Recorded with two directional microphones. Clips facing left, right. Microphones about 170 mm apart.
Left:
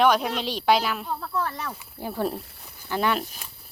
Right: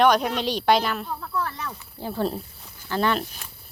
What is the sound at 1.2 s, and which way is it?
Speech, 30° left (ahead or behind).